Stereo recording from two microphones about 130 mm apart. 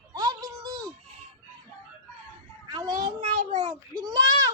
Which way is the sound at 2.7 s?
30° right (ahead or behind).